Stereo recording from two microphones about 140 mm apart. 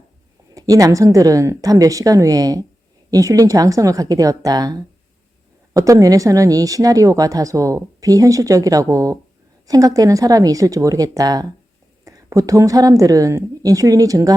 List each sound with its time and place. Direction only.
0.5 s a woman's voice: 25° right (ahead or behind)